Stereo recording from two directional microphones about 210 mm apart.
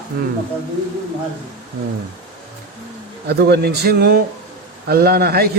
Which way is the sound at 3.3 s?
50° right (ahead or behind).